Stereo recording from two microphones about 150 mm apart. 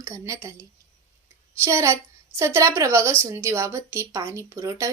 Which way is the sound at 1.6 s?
20° right (ahead or behind).